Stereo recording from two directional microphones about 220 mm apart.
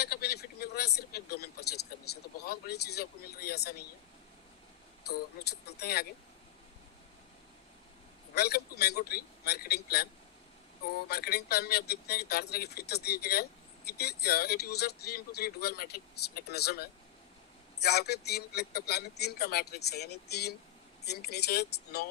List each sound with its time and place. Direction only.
0.0 s speech: 45° left (ahead or behind)
5.0 s speech: 45° left (ahead or behind)
8.4 s speech: 45° left (ahead or behind)
11.1 s speech: 45° left (ahead or behind)